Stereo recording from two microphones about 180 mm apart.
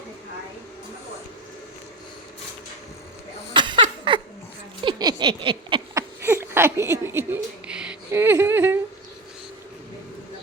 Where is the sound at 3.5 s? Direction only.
25° right (ahead or behind).